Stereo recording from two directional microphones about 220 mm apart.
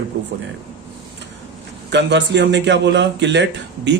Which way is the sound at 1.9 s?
55° right (ahead or behind).